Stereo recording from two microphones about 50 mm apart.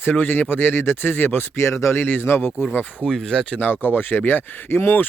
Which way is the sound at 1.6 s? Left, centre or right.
Left.